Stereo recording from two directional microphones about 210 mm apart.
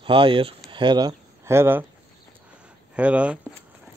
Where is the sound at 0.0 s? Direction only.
25° right (ahead or behind).